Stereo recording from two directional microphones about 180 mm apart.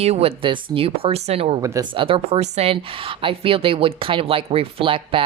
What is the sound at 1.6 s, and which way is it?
A woman's voice, 20° right (ahead or behind).